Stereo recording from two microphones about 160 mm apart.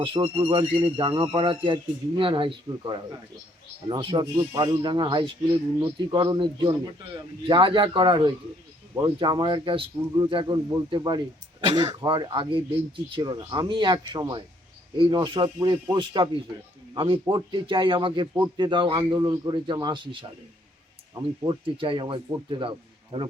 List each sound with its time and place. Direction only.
0.0 s a man's voice: 30° right (ahead or behind)
21.2 s a man's voice: 30° right (ahead or behind)